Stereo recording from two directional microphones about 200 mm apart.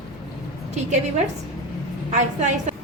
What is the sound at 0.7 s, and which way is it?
A woman's voice, 35° right (ahead or behind).